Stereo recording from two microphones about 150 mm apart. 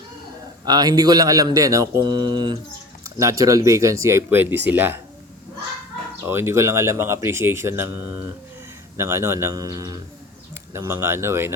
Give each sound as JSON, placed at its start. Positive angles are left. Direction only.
{"t": 0.6, "sound": "a man's voice", "side_deg": -25}
{"t": 6.2, "sound": "speech", "side_deg": -15}
{"t": 9.0, "sound": "a man's voice", "side_deg": -20}